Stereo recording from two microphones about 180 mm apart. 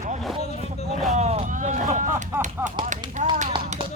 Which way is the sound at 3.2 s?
45° right (ahead or behind).